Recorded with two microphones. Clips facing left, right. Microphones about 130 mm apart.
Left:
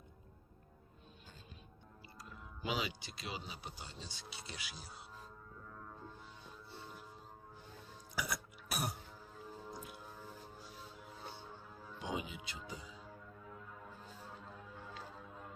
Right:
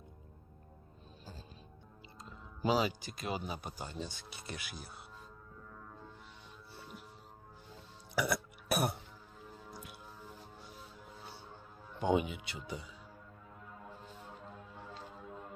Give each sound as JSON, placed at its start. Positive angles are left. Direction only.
{"t": 2.6, "sound": "speech", "side_deg": -40}
{"t": 8.1, "sound": "throat clearing", "side_deg": -65}
{"t": 11.9, "sound": "speech", "side_deg": -60}